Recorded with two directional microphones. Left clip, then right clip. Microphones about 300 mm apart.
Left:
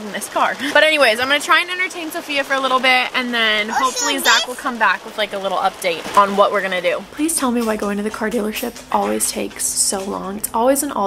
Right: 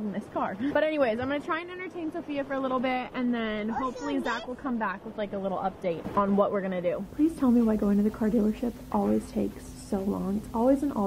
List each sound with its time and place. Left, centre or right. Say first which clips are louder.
0.3 s a child's voice: left 13 dB; centre